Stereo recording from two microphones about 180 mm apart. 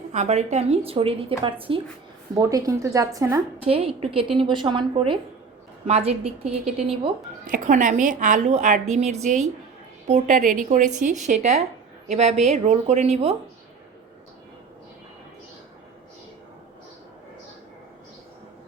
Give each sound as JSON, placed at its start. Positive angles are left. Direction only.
{"t": 0.1, "sound": "a woman's voice", "side_deg": -40}
{"t": 2.3, "sound": "a woman's voice", "side_deg": -20}
{"t": 3.6, "sound": "a woman's voice", "side_deg": -30}
{"t": 7.4, "sound": "a woman's voice", "side_deg": -45}